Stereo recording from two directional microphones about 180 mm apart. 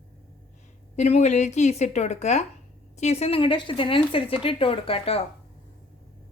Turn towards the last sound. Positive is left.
turn(degrees=30)  # may be behind; listen again after turning